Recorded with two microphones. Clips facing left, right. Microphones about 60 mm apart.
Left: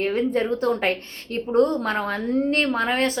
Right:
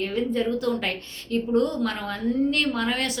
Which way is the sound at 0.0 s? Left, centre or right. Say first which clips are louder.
Left 3 dB; left.